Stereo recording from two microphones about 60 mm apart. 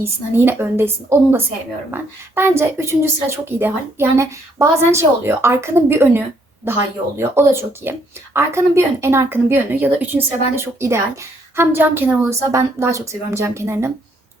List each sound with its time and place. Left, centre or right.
0.0 s a woman's voice: right
10.5 s a woman's voice: right
12.3 s speech: right